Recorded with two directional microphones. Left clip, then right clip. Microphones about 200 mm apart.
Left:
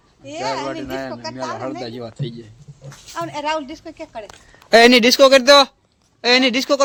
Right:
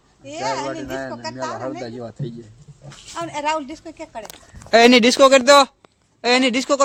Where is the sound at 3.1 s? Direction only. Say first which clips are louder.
Even; 10° right (ahead or behind).